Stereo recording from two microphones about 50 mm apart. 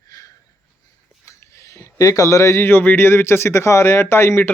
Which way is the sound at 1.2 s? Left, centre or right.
Left.